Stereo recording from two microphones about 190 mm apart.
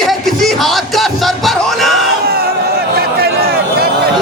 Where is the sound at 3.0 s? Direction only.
55° right (ahead or behind).